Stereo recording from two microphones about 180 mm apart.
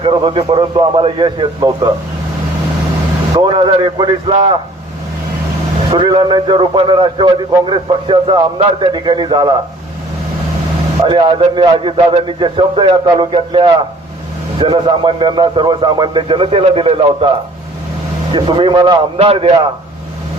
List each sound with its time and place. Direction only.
0.0 s a man's voice: 30° right (ahead or behind)
3.3 s a man's voice: 25° right (ahead or behind)
6.0 s a man's voice: 30° right (ahead or behind)
11.0 s a man's voice: 25° right (ahead or behind)